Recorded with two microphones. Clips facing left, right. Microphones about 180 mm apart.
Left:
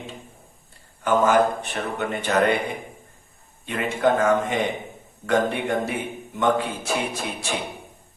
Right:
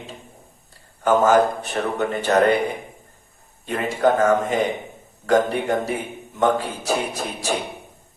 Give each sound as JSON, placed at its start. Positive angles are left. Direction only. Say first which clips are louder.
{"t": 1.0, "sound": "a man's voice", "louder": "right 3 dB", "side_deg": -40}
{"t": 3.7, "sound": "a man's voice", "louder": "right 2 dB", "side_deg": -40}